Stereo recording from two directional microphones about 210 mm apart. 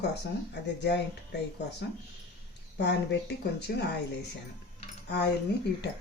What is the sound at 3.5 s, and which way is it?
Speech, 50° left (ahead or behind).